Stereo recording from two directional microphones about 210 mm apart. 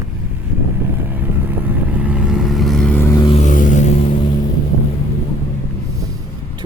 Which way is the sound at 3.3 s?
40° left (ahead or behind).